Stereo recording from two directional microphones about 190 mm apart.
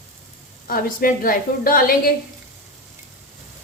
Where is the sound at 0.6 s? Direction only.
50° left (ahead or behind).